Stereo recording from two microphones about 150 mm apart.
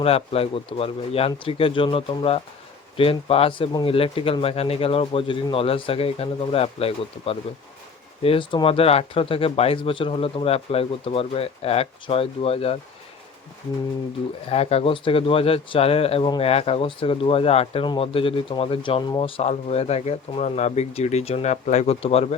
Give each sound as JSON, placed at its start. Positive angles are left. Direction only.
{"t": 0.0, "sound": "speech", "side_deg": 40}
{"t": 14.5, "sound": "speech", "side_deg": 45}